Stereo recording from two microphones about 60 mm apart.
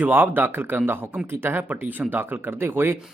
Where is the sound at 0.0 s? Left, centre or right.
Right.